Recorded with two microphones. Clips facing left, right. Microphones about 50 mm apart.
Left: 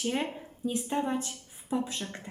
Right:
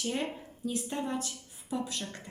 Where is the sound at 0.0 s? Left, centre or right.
Centre.